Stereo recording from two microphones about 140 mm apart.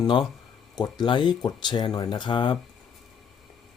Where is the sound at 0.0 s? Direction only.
35° left (ahead or behind).